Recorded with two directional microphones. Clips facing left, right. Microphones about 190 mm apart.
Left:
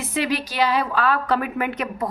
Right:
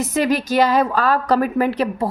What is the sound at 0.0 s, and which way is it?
A woman's voice, 45° right (ahead or behind).